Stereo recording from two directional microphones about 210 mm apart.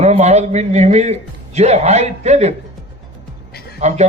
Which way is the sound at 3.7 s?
30° right (ahead or behind).